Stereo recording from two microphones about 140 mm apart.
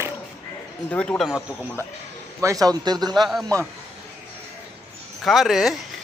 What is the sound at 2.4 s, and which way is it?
Speech, 25° right (ahead or behind).